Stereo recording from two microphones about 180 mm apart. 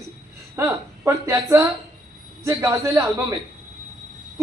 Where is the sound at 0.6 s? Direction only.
15° right (ahead or behind).